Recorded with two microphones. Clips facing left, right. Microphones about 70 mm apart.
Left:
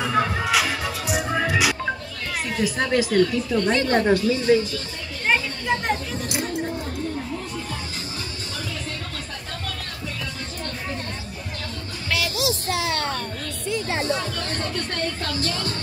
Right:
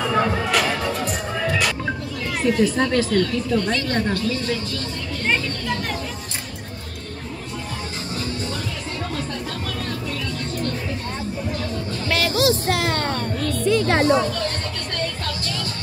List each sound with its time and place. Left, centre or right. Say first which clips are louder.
0.0 s music: right 2 dB; centre
1.3 s music: left 1 dB; centre
2.4 s speech: right 6 dB; centre
3.9 s speech: left 3 dB; centre
12.1 s music: right 5 dB; right
12.6 s music: right 3 dB; right
13.7 s music: right 7 dB; right